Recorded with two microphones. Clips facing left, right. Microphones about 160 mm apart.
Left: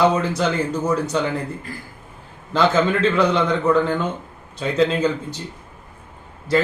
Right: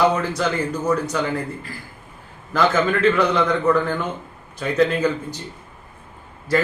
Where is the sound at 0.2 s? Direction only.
25° left (ahead or behind).